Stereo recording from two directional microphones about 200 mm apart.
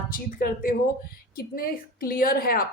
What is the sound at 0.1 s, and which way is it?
A woman's voice, 45° left (ahead or behind).